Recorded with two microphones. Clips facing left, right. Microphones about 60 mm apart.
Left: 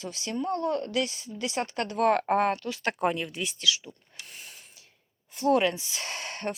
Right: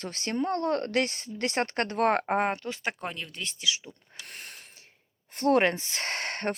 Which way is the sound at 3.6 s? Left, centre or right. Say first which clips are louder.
Left 2 dB; right.